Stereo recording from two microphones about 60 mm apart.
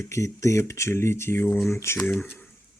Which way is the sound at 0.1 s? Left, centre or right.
Left.